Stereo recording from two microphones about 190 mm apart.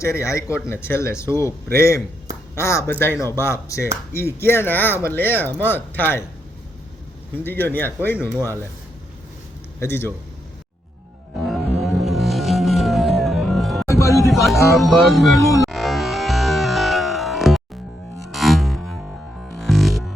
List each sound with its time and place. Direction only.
0.0 s speech: 15° left (ahead or behind)
7.3 s speech: 10° left (ahead or behind)
9.8 s speech: 10° left (ahead or behind)
11.4 s music: centre (ahead or behind)
13.8 s music: 15° left (ahead or behind)
14.3 s music: centre (ahead or behind)
14.8 s speech: centre (ahead or behind)
15.7 s music: centre (ahead or behind)